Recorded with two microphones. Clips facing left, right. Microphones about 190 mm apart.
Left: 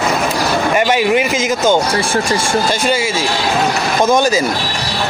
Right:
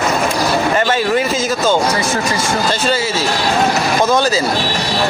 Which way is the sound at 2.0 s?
30° left (ahead or behind).